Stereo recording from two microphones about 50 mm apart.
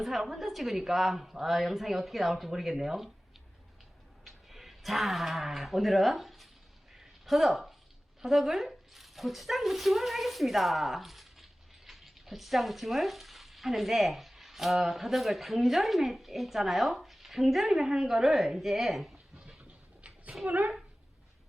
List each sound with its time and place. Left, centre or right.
0.0 s a woman's voice: centre
4.2 s speech: centre
6.9 s a sound: centre
8.2 s speech: centre
11.9 s frying: centre
19.4 s a sound: centre
20.0 s cat: right
20.5 s speech: right